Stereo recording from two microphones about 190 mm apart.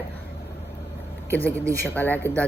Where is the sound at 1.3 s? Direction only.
10° left (ahead or behind).